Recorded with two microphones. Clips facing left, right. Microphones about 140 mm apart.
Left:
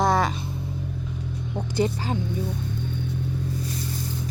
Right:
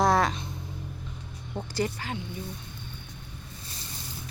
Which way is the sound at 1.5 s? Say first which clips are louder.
Left 5 dB; 20° left (ahead or behind).